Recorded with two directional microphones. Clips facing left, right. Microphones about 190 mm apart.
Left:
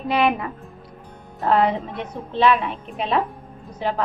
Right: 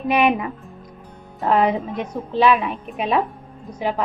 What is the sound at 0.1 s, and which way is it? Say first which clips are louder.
A woman's voice: right 2 dB; 15° right (ahead or behind).